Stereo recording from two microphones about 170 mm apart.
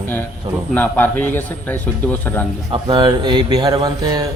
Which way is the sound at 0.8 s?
10° left (ahead or behind).